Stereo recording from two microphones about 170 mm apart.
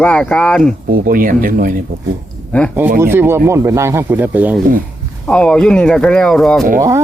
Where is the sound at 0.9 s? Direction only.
55° right (ahead or behind).